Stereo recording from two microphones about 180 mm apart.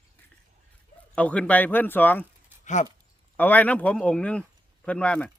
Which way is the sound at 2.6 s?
40° left (ahead or behind).